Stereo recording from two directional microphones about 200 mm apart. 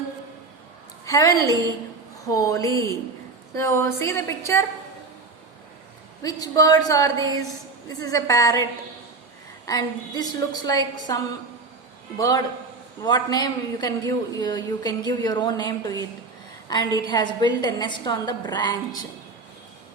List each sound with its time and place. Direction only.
1.0 s a woman's voice: 15° left (ahead or behind)
6.2 s a woman's voice: 20° left (ahead or behind)
9.6 s a man's voice: 20° left (ahead or behind)
13.0 s a man's voice: 20° left (ahead or behind)